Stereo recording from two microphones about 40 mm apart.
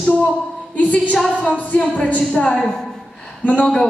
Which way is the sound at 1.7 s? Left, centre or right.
Left.